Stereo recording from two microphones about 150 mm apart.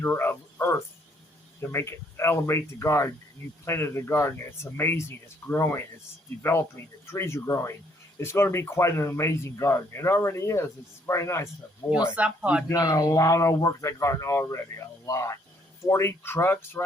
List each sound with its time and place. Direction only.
0.0 s cricket: 15° left (ahead or behind)
1.6 s speech: 15° left (ahead or behind)
12.1 s speech: 10° right (ahead or behind)
12.6 s speech: 25° left (ahead or behind)